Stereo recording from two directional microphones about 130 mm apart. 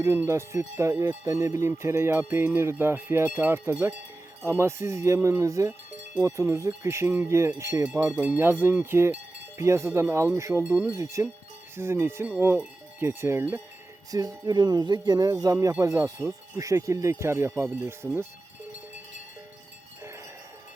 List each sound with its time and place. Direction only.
0.0 s speech: 20° right (ahead or behind)
14.1 s speech: 30° right (ahead or behind)